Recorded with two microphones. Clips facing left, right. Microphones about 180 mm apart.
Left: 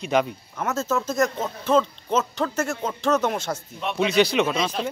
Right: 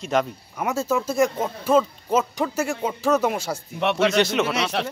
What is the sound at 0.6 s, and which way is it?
Speech, 10° right (ahead or behind).